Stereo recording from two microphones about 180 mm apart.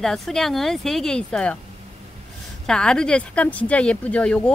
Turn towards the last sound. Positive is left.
turn(degrees=5)  # may be behind; listen again after turning